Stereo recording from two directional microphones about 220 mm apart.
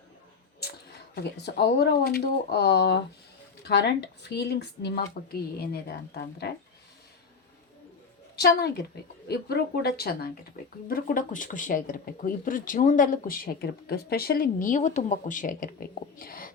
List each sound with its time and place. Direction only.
0.6 s speech: 45° left (ahead or behind)
8.4 s speech: 45° left (ahead or behind)